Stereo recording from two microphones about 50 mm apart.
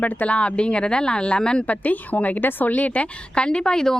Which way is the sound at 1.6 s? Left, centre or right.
Left.